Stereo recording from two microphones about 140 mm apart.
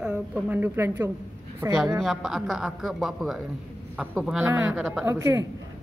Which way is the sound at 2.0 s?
Centre (ahead or behind).